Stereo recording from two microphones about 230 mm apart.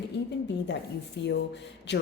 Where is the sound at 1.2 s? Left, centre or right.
Left.